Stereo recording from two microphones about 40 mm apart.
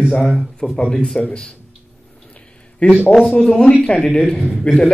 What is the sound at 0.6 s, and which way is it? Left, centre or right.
Speech, centre.